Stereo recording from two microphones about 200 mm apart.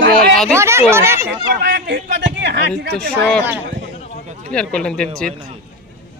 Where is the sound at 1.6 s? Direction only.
55° right (ahead or behind).